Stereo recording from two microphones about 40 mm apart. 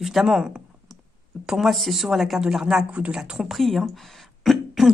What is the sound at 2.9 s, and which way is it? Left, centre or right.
Speech, right.